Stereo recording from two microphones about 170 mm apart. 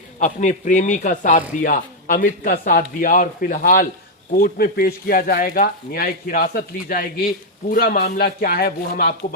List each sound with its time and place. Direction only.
0.2 s a man's voice: 45° left (ahead or behind); by 9.1 s 60° left (ahead or behind)